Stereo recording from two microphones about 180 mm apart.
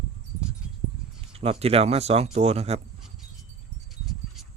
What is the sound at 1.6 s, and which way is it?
Speech, 35° right (ahead or behind).